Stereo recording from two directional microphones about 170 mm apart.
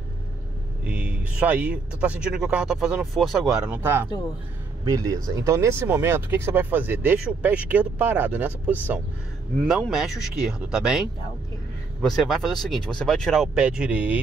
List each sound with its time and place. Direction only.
0.8 s speech: 10° right (ahead or behind)